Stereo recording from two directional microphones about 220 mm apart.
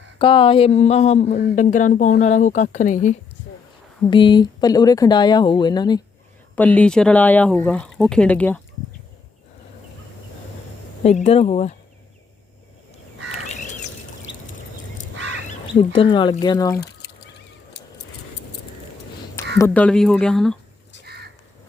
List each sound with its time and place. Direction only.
0.2 s speech: 25° left (ahead or behind)
4.0 s speech: 20° left (ahead or behind)
6.6 s speech: 5° left (ahead or behind)
11.0 s speech: 30° left (ahead or behind)
15.6 s speech: 20° left (ahead or behind)
19.5 s speech: 10° left (ahead or behind)